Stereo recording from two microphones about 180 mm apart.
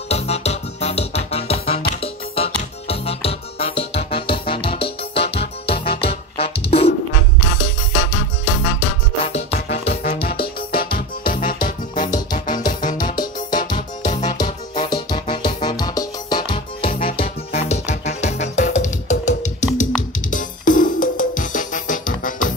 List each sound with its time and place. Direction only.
0.1 s music: 35° left (ahead or behind)
7.9 s music: 40° left (ahead or behind)
10.4 s music: 55° left (ahead or behind)
12.1 s music: 25° left (ahead or behind)
12.5 s music: 45° left (ahead or behind)
13.1 s music: 25° left (ahead or behind); by 22.5 s 50° left (ahead or behind)